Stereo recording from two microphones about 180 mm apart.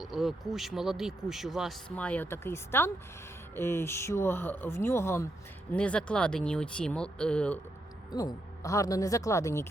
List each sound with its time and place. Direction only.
0.0 s speech: centre (ahead or behind)
8.1 s speech: 20° left (ahead or behind)